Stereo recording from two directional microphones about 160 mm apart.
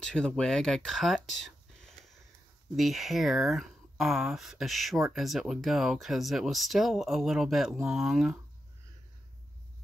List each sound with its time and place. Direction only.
0.0 s speech: 5° left (ahead or behind)